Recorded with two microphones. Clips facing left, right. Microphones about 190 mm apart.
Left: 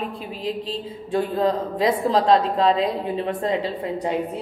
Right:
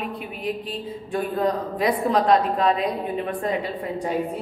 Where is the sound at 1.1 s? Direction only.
25° left (ahead or behind).